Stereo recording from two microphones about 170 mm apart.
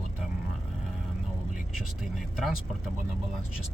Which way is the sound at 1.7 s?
Centre (ahead or behind).